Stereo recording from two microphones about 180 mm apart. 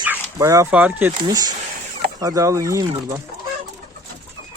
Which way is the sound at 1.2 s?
20° right (ahead or behind).